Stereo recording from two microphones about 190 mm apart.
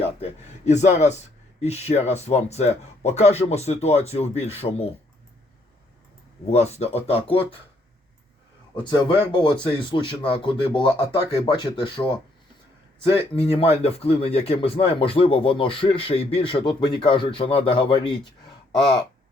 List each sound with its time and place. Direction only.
0.0 s a sound: 35° left (ahead or behind)
1.6 s speech: 35° left (ahead or behind)
6.5 s speech: 35° left (ahead or behind)
8.7 s speech: 25° left (ahead or behind)